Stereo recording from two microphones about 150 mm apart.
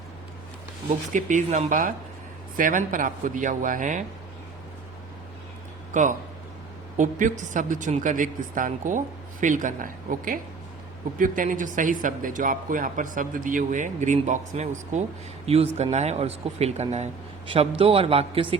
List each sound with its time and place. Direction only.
1.1 s speech: 55° right (ahead or behind)
5.9 s speech: 55° right (ahead or behind); by 18.4 s 40° right (ahead or behind)